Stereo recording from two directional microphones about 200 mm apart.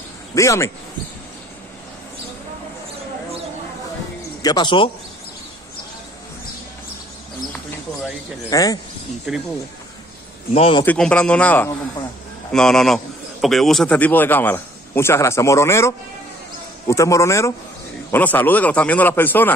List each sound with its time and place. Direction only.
0.3 s speech: 15° left (ahead or behind)
4.4 s speech: 20° left (ahead or behind)
8.5 s speech: 15° left (ahead or behind)
9.3 s a man's voice: centre (ahead or behind)
10.5 s a man's voice: 25° left (ahead or behind)
10.9 s a man's voice: 5° left (ahead or behind)